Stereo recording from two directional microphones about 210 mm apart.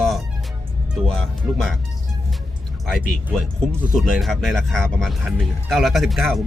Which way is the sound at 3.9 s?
Centre (ahead or behind).